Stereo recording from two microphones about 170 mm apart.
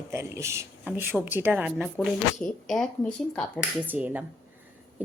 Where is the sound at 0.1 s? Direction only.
15° right (ahead or behind).